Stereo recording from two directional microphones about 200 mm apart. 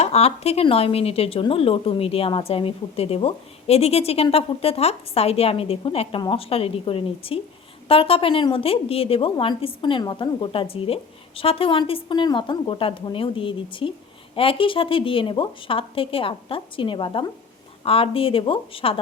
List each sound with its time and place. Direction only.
0.0 s speech: 30° left (ahead or behind)